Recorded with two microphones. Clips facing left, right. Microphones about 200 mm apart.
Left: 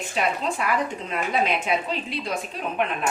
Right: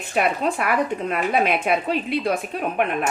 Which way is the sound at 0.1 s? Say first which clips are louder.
Right 5 dB; 55° right (ahead or behind).